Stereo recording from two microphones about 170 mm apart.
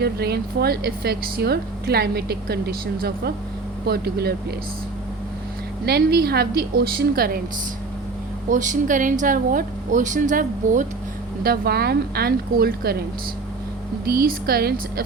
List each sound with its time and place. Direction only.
0.0 s a woman's voice: 70° right (ahead or behind)
5.8 s a woman's voice: 65° right (ahead or behind)
8.4 s a woman's voice: 50° right (ahead or behind)
11.4 s a woman's voice: 65° right (ahead or behind)
14.1 s a woman's voice: 60° right (ahead or behind)